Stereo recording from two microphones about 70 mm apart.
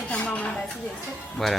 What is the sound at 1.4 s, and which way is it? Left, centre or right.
Speech, centre.